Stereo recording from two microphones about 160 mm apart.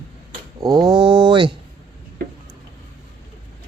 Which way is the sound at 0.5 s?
25° right (ahead or behind).